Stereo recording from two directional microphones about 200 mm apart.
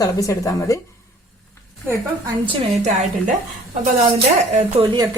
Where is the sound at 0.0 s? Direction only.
15° left (ahead or behind).